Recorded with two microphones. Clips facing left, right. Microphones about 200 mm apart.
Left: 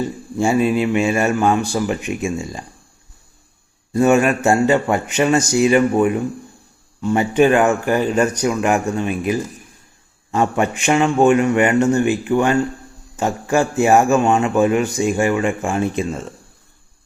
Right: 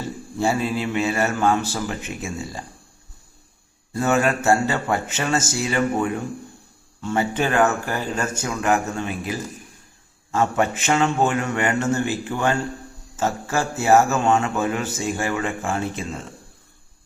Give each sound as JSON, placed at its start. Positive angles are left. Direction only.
{"t": 0.3, "sound": "a man's voice", "side_deg": 15}
{"t": 4.0, "sound": "a man's voice", "side_deg": 15}